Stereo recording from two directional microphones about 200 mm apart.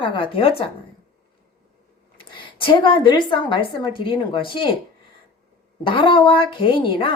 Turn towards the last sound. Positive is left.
turn(degrees=25)  # may be behind; listen again after turning